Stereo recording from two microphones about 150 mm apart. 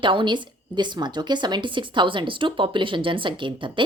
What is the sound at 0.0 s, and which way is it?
A woman's voice, 35° right (ahead or behind).